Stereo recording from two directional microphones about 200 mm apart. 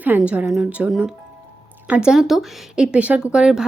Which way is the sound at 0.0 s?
5° right (ahead or behind).